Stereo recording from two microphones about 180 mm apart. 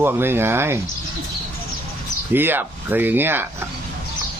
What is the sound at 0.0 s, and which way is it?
Speech, 10° right (ahead or behind).